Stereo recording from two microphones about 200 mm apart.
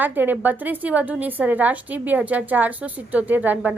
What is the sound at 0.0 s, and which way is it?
A woman's voice, 10° right (ahead or behind).